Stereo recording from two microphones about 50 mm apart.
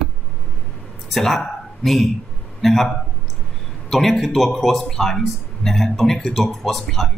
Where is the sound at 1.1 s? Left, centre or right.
Centre.